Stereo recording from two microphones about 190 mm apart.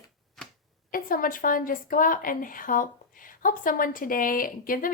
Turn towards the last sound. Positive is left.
turn(degrees=45)  # may be behind; listen again after turning